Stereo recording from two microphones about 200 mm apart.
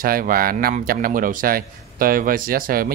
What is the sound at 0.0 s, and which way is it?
Speech, 45° right (ahead or behind).